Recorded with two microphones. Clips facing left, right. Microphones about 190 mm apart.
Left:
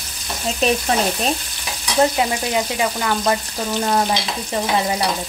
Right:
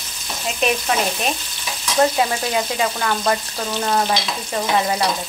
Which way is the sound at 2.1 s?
15° left (ahead or behind).